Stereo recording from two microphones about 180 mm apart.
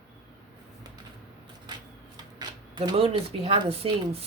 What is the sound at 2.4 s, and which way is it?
Speech, 25° right (ahead or behind).